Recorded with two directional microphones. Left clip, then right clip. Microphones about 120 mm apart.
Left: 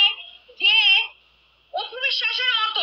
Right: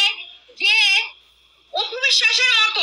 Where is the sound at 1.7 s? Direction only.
40° right (ahead or behind).